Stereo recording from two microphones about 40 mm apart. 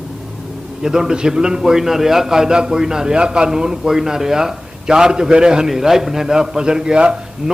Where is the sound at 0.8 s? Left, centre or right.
Centre.